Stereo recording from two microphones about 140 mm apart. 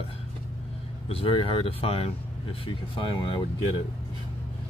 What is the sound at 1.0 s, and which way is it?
Speech, 40° left (ahead or behind).